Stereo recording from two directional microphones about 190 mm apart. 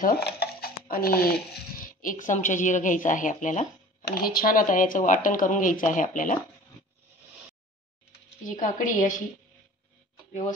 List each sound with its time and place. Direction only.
0.0 s dishes: 55° left (ahead or behind)
2.0 s speech: 45° left (ahead or behind)
4.0 s speech: 50° left (ahead or behind)
8.5 s speech: 40° left (ahead or behind)